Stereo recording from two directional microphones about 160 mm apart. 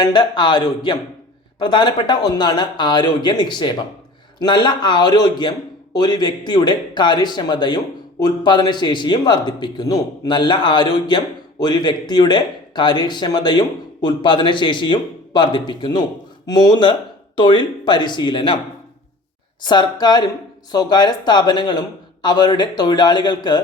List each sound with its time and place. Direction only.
0.0 s speech: 30° left (ahead or behind)
19.6 s speech: 25° left (ahead or behind)